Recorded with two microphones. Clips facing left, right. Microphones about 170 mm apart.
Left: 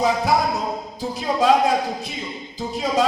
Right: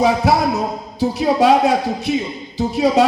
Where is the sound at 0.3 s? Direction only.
70° right (ahead or behind).